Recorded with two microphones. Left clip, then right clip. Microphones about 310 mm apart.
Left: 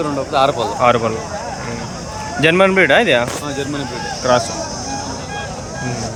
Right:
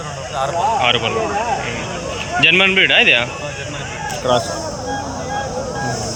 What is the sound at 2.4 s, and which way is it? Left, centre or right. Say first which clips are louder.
Speech: even; centre.